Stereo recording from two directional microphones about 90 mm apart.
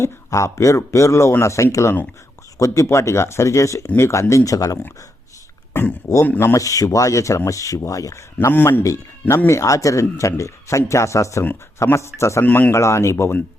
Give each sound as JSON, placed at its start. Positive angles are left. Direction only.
{"t": 0.0, "sound": "speech", "side_deg": 35}
{"t": 5.7, "sound": "speech", "side_deg": 20}
{"t": 6.5, "sound": "speech", "side_deg": 40}
{"t": 8.5, "sound": "speech", "side_deg": 20}
{"t": 12.5, "sound": "speech", "side_deg": 15}
{"t": 12.7, "sound": "speech", "side_deg": 30}